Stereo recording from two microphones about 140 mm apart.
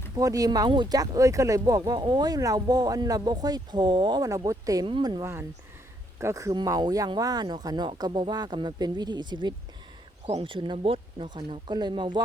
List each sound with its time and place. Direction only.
0.2 s speech: 25° right (ahead or behind)
4.9 s speech: 35° right (ahead or behind)
5.2 s speech: 20° right (ahead or behind)
10.2 s speech: 45° right (ahead or behind)